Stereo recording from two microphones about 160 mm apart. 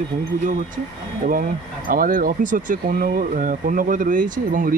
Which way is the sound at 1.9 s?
60° right (ahead or behind).